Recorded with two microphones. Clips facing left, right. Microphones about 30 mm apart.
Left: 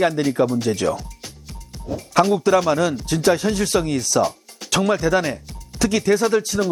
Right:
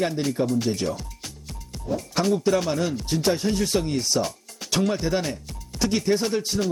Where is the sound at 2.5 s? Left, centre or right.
Left.